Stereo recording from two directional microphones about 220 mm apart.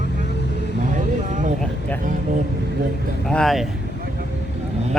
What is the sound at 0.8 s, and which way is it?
Vehicle, 35° right (ahead or behind).